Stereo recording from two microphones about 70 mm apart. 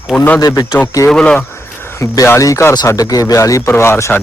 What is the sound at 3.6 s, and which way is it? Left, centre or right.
Speech, left.